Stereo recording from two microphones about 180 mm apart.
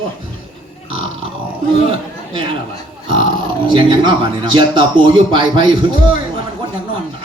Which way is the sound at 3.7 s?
25° right (ahead or behind).